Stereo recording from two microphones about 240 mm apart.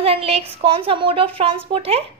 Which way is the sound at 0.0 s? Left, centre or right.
Right.